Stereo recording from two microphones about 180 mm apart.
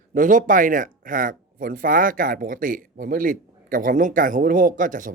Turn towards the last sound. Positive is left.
turn(degrees=-45)  # may be behind; listen again after turning